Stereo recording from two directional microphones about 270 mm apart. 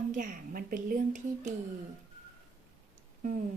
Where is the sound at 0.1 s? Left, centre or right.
Right.